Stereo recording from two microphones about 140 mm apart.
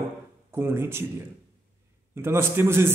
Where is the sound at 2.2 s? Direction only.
20° right (ahead or behind).